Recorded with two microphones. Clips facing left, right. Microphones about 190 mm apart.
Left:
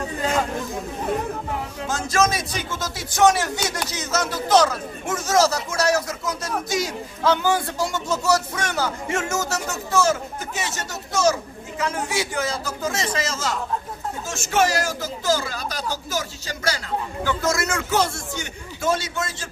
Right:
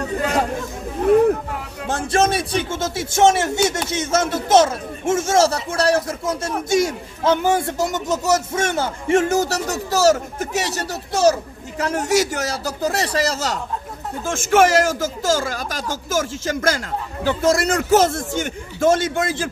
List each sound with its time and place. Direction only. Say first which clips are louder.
1.9 s speech: right 3 dB; 30° right (ahead or behind)
14.2 s speech: right 6 dB; 55° right (ahead or behind)
17.2 s speech: right 7 dB; 30° right (ahead or behind); by 19.5 s 55° right (ahead or behind)